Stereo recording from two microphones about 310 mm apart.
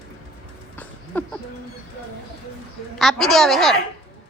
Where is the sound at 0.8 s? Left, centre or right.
Centre.